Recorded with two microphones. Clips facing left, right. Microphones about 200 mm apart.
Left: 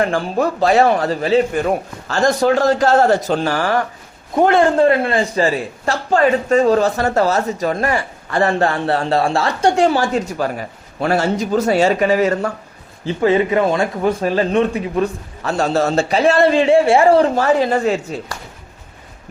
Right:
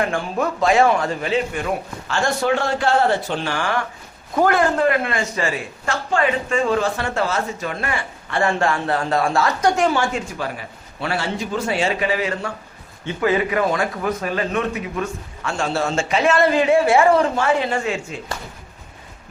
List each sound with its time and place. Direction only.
0.0 s a man's voice: 35° left (ahead or behind)
4.4 s a man's voice: 25° left (ahead or behind); by 12.5 s 45° left (ahead or behind)
13.1 s a man's voice: 30° left (ahead or behind)